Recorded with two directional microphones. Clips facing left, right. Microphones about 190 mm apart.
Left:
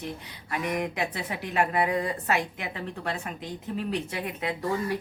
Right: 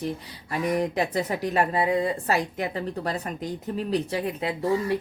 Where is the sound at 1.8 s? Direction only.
25° right (ahead or behind).